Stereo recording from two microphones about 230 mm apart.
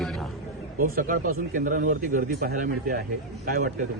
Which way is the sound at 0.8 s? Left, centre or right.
Right.